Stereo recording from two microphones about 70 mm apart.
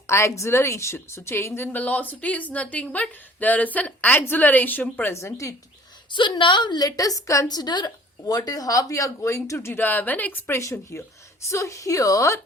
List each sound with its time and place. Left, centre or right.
0.1 s a woman's voice: left
5.1 s a woman's voice: left
6.1 s a woman's voice: left
9.7 s a woman's voice: left
10.6 s a woman's voice: left